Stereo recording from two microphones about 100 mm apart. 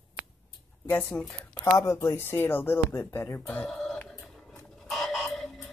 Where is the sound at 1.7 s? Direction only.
30° left (ahead or behind); by 4.0 s 5° left (ahead or behind).